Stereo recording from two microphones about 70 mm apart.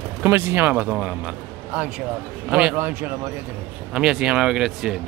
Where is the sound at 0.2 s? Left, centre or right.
Right.